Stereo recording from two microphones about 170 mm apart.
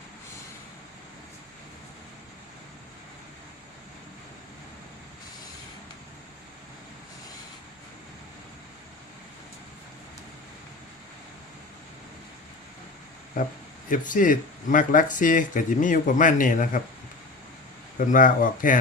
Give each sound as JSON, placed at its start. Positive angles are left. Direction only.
{"t": 13.9, "sound": "speech", "side_deg": 50}
{"t": 18.0, "sound": "speech", "side_deg": 50}